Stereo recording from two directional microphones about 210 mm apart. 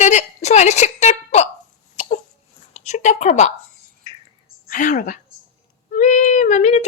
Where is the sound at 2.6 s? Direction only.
30° left (ahead or behind).